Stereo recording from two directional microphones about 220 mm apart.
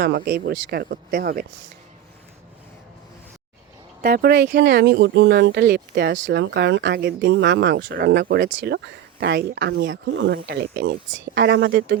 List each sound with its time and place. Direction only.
0.0 s speech: 50° right (ahead or behind)
4.0 s speech: 45° right (ahead or behind)